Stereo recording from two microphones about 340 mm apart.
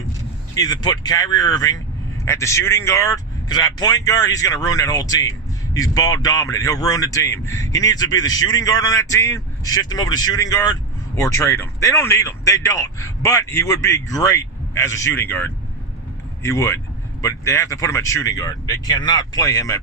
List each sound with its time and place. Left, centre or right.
0.5 s speech: centre